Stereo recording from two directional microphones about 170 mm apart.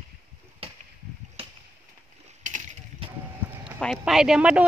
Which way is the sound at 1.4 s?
35° right (ahead or behind).